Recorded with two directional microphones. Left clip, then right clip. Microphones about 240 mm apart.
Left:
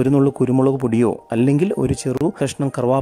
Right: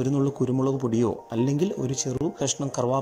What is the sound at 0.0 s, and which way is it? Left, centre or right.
Speech, left.